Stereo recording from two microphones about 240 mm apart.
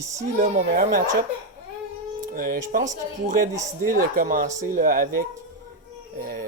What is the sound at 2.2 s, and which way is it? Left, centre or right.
Speech, right.